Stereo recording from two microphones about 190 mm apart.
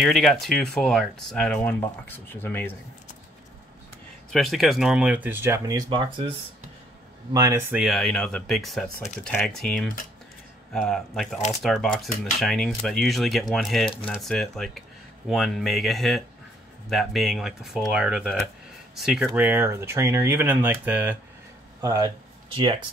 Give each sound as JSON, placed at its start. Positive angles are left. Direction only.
{"t": 0.0, "sound": "speech", "side_deg": 0}
{"t": 4.3, "sound": "speech", "side_deg": 0}
{"t": 7.3, "sound": "speech", "side_deg": -15}
{"t": 7.8, "sound": "speech", "side_deg": 0}